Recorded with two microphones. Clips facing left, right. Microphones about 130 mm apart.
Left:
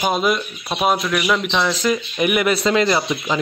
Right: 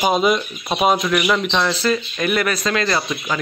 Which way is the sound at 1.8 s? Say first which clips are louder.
Left 1 dB; 15° left (ahead or behind).